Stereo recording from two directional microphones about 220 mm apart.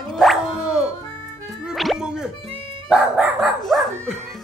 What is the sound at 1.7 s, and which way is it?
Music, centre (ahead or behind).